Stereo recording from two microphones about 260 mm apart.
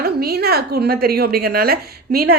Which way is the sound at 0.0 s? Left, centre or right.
Right.